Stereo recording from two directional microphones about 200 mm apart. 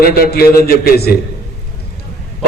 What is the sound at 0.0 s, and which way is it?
A man's voice, 50° left (ahead or behind).